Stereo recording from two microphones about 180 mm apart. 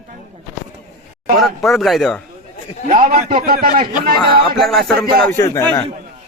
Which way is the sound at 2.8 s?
35° right (ahead or behind).